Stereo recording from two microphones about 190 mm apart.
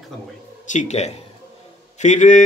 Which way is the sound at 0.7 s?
40° left (ahead or behind).